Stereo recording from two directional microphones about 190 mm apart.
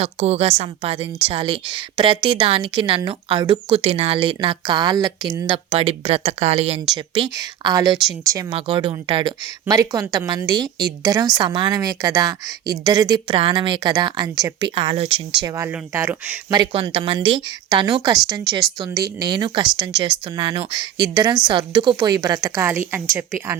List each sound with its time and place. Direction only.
0.0 s a woman's voice: 30° right (ahead or behind)
15.4 s speech: 15° right (ahead or behind)
16.5 s a woman's voice: 20° right (ahead or behind)